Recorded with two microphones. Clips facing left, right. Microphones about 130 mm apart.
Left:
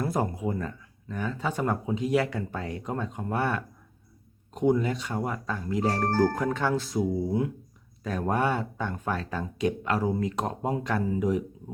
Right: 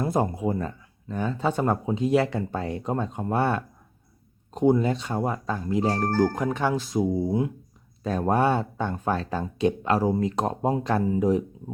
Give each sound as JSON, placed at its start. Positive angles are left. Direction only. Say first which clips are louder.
{"t": 0.0, "sound": "speech", "louder": "right 3 dB", "side_deg": -25}